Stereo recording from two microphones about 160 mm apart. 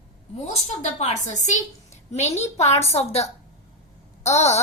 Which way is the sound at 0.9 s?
45° left (ahead or behind).